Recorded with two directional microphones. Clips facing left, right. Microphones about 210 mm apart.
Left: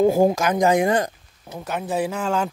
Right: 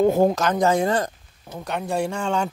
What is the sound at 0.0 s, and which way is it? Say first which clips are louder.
Speech: left 1 dB; 10° left (ahead or behind).